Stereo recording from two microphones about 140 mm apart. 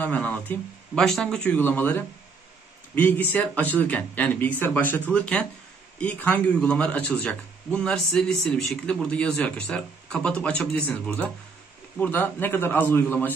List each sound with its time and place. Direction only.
0.0 s speech: 10° left (ahead or behind)
12.0 s speech: 15° left (ahead or behind)